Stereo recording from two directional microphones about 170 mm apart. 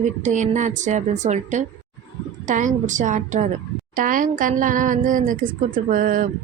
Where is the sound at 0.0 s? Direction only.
45° right (ahead or behind).